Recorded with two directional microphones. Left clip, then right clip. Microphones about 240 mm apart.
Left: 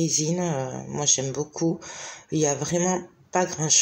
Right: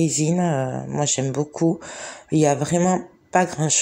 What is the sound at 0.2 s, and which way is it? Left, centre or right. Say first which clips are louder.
Speech: right 5 dB; right.